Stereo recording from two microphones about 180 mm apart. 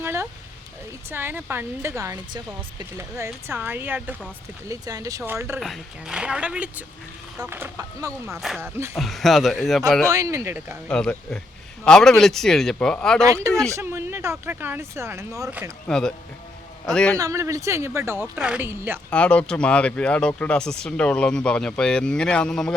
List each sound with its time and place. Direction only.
0.0 s a sound: 15° right (ahead or behind)
1.1 s speech: 10° right (ahead or behind)
5.5 s speech: centre (ahead or behind); by 8.1 s 15° right (ahead or behind)
8.3 s speech: centre (ahead or behind)
8.6 s speech: 15° right (ahead or behind)
9.0 s speech: centre (ahead or behind)
10.1 s speech: 20° right (ahead or behind)
10.8 s speech: 5° left (ahead or behind)
13.2 s speech: 15° right (ahead or behind)
15.9 s speech: 5° left (ahead or behind)
17.2 s speech: 15° right (ahead or behind)
19.1 s speech: 5° left (ahead or behind)